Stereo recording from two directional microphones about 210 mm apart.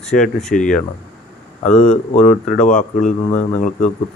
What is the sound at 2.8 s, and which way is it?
Speech, 35° left (ahead or behind).